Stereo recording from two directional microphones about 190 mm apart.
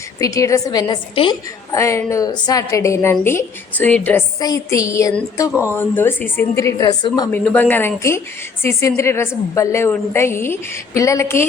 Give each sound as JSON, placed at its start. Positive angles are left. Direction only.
{"t": 0.2, "sound": "a woman's voice", "side_deg": 15}
{"t": 4.4, "sound": "a woman's voice", "side_deg": 20}
{"t": 7.3, "sound": "a woman's voice", "side_deg": 10}